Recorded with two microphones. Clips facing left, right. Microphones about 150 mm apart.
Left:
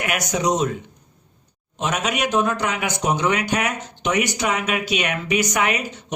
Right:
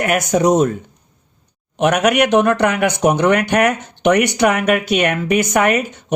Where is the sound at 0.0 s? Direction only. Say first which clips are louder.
Right 7 dB; 50° right (ahead or behind).